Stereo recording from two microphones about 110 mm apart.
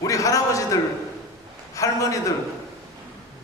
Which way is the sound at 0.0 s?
30° left (ahead or behind).